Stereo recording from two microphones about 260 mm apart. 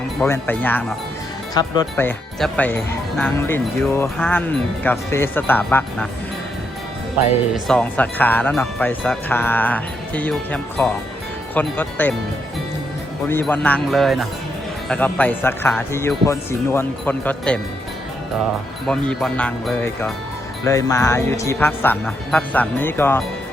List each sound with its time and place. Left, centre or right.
0.2 s speech: centre
7.5 s speech: centre
13.2 s speech: centre
18.9 s speech: centre